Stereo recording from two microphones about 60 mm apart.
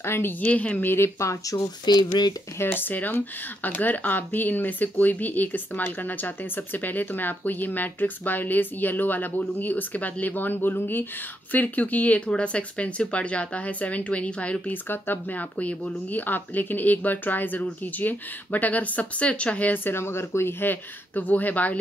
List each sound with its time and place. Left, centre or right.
0.0 s a woman's voice: left
0.4 s speech: left
0.8 s speech: left
2.6 s speech: left
14.9 s speech: left
20.6 s speech: left